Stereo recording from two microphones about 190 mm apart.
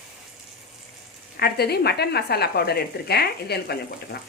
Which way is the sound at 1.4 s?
55° left (ahead or behind).